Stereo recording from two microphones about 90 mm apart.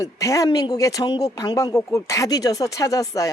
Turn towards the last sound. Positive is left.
turn(degrees=40)  # may be behind; listen again after turning